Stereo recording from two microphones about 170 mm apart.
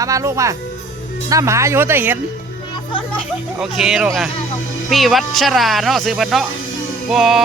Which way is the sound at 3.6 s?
Centre (ahead or behind).